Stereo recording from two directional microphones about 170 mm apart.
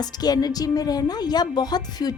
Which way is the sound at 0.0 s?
25° left (ahead or behind).